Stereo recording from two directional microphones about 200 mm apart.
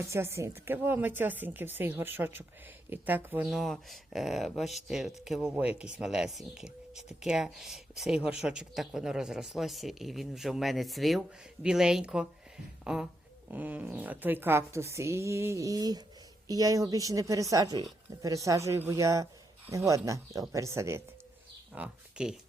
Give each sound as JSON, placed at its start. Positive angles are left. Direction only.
{"t": 0.1, "sound": "a man's voice", "side_deg": -15}
{"t": 21.8, "sound": "speech", "side_deg": -5}